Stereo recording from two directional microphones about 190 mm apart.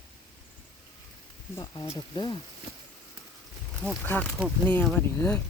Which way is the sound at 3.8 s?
5° left (ahead or behind).